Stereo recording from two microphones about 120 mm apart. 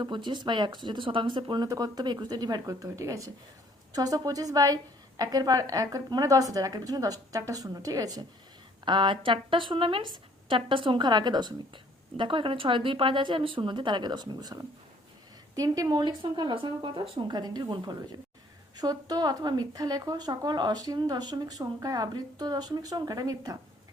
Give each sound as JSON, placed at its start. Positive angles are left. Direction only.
{"t": 0.0, "sound": "a woman's voice", "side_deg": -40}
{"t": 1.6, "sound": "a woman's voice", "side_deg": -30}
{"t": 8.8, "sound": "a woman's voice", "side_deg": -40}